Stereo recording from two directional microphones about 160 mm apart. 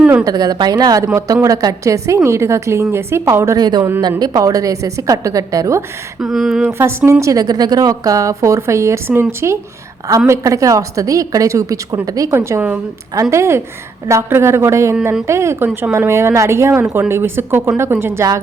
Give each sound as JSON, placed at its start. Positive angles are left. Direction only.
{"t": 0.0, "sound": "a sound", "side_deg": -5}
{"t": 0.3, "sound": "a woman's voice", "side_deg": -25}
{"t": 6.2, "sound": "speech", "side_deg": 0}
{"t": 6.7, "sound": "a woman's voice", "side_deg": -15}